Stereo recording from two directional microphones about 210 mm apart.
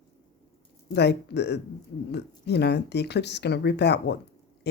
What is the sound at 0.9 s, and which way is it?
Speech, 50° left (ahead or behind).